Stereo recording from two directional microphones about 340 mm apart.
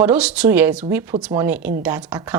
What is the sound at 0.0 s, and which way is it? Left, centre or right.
A woman's voice, centre.